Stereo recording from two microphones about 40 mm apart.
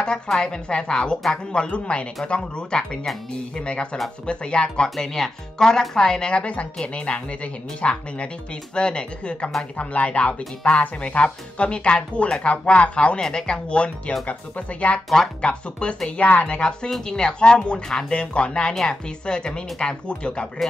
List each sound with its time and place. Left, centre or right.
0.4 s speech: left
4.8 s speech: centre; by 13.2 s left
13.2 s a woman's voice: centre; by 16.5 s left
16.5 s speech: left